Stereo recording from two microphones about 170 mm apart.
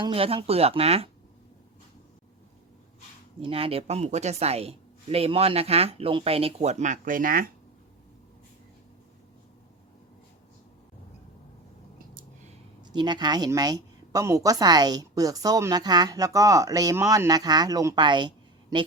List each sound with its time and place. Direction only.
0.0 s speech: 35° right (ahead or behind)
3.4 s speech: 35° right (ahead or behind); by 7.4 s 55° right (ahead or behind)
12.9 s a woman's voice: 25° right (ahead or behind)